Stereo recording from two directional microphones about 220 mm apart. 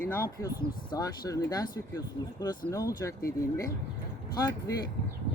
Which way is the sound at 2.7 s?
15° left (ahead or behind).